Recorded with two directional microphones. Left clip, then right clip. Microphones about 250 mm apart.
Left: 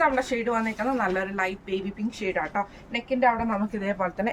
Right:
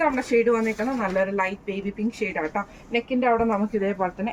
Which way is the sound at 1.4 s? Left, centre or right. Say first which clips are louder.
Right 2 dB; centre.